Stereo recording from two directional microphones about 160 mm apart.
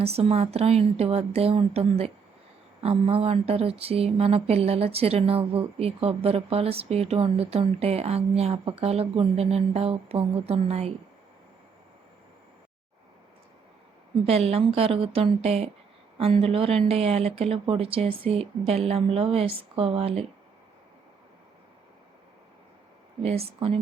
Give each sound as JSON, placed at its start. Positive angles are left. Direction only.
{"t": 0.0, "sound": "speech", "side_deg": -40}
{"t": 14.3, "sound": "speech", "side_deg": -40}
{"t": 23.2, "sound": "speech", "side_deg": -40}